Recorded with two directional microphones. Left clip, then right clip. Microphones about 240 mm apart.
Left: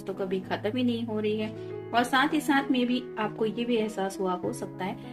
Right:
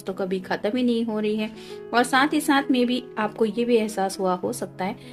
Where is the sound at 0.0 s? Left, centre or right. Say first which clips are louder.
Right 4 dB; right.